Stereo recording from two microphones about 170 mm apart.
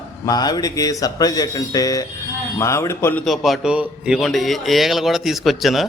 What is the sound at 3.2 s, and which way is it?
A man's voice, centre (ahead or behind).